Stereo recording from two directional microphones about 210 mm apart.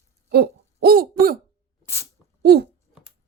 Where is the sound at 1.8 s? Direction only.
10° left (ahead or behind).